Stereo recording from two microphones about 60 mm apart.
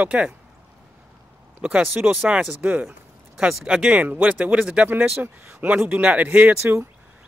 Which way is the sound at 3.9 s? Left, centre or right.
Right.